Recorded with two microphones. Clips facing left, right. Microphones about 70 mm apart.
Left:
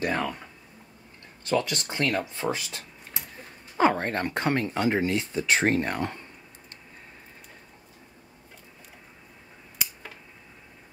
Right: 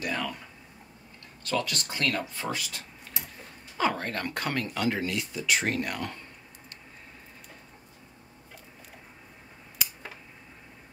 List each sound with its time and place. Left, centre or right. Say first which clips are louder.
0.0 s speech: left 4 dB; left
1.4 s speech: left 4 dB; left
2.5 s a sound: left 1 dB; left
3.7 s speech: left 5 dB; left